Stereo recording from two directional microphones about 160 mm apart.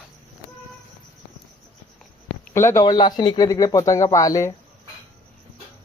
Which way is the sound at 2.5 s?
15° left (ahead or behind).